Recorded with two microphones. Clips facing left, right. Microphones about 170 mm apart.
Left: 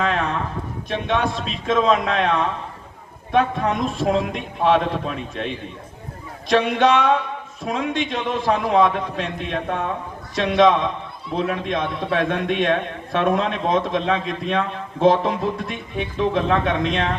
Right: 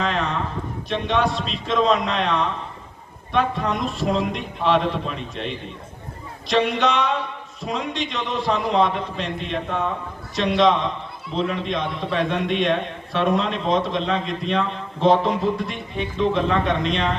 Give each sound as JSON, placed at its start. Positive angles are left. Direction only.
{"t": 0.0, "sound": "a sound", "side_deg": 50}
{"t": 0.9, "sound": "a man's voice", "side_deg": 50}
{"t": 6.5, "sound": "a man's voice", "side_deg": 50}
{"t": 16.3, "sound": "a man's voice", "side_deg": 50}